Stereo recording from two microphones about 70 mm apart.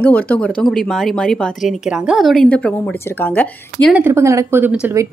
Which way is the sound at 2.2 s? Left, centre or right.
Centre.